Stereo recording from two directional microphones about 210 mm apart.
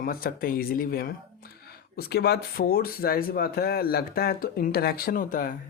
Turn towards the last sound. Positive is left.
turn(degrees=40)  # may be behind; listen again after turning